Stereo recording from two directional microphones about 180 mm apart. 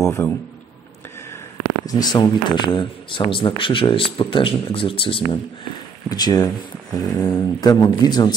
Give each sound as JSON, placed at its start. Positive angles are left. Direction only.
{"t": 0.0, "sound": "speech", "side_deg": 15}
{"t": 1.9, "sound": "speech", "side_deg": 20}